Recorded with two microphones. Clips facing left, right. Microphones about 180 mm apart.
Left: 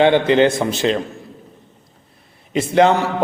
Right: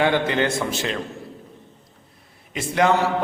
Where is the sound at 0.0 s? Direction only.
20° left (ahead or behind).